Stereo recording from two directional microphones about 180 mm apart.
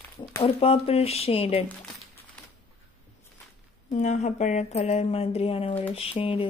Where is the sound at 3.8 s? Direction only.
40° left (ahead or behind).